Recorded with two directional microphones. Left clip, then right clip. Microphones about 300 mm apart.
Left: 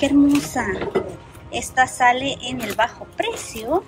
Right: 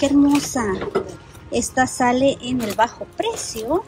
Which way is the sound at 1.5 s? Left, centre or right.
Centre.